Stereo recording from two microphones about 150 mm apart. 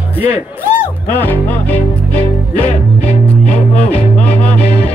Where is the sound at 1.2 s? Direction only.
10° left (ahead or behind).